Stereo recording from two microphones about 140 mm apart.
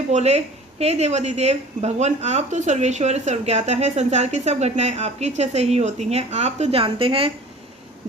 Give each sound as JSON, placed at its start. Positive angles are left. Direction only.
{"t": 0.1, "sound": "a woman's voice", "side_deg": -50}